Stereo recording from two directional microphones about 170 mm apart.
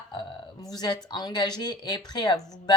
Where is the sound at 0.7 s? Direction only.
25° left (ahead or behind).